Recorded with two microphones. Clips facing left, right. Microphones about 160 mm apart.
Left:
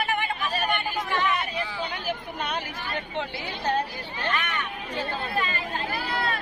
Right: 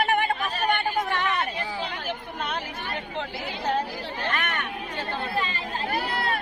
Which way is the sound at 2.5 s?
Centre (ahead or behind).